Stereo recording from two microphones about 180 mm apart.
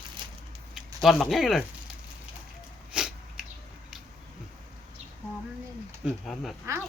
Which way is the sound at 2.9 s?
5° right (ahead or behind).